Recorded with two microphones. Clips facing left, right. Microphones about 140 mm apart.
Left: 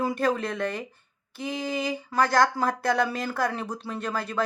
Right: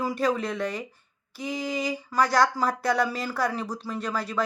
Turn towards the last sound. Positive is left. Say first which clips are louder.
# even
turn(degrees=55)  # may be behind; listen again after turning